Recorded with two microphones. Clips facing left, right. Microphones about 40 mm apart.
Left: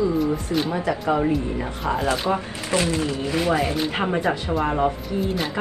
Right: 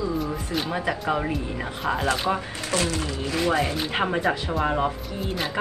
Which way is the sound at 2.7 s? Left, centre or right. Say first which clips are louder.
Left 4 dB; left.